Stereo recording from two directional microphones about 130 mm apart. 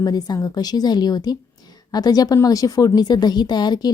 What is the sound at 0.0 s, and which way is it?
A woman's voice, 30° left (ahead or behind).